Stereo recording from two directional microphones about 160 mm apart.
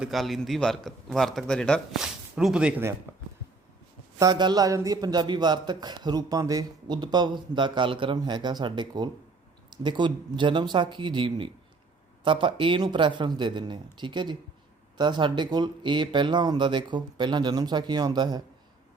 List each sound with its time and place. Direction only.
0.0 s a man's voice: centre (ahead or behind)
4.2 s a man's voice: 25° right (ahead or behind)